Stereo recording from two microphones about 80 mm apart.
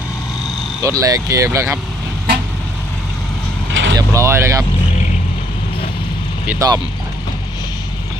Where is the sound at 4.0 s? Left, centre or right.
Right.